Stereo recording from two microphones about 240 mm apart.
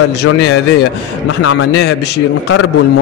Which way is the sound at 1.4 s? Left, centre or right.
Left.